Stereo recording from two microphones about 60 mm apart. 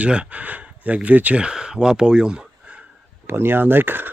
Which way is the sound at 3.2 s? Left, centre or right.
Right.